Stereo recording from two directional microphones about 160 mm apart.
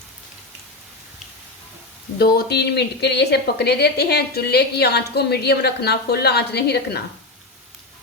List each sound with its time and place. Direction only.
2.1 s a woman's voice: 75° left (ahead or behind)